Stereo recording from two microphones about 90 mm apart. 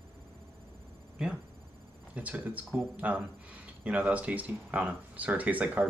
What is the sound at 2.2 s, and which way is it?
Speech, 15° right (ahead or behind).